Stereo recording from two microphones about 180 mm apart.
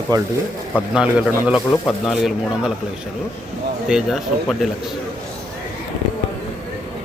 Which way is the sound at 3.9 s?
5° right (ahead or behind).